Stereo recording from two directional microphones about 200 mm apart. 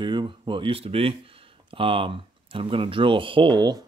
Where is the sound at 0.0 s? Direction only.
20° right (ahead or behind).